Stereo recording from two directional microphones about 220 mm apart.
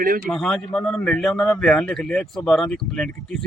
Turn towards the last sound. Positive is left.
turn(degrees=0)  # may be behind; listen again after turning